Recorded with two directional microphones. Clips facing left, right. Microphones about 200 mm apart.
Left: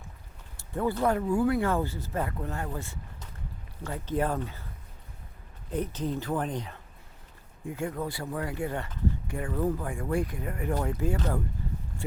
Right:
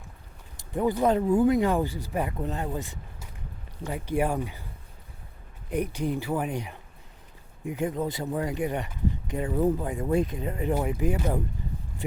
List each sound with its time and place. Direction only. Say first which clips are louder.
0.5 s speech: right 3 dB; 15° right (ahead or behind)
5.7 s speech: right 3 dB; 15° right (ahead or behind)